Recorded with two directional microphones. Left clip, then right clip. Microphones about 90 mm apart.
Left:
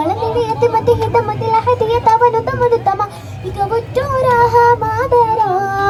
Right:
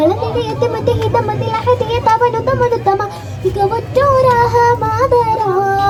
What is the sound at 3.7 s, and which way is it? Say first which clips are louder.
Child singing: right 4 dB; 50° left (ahead or behind).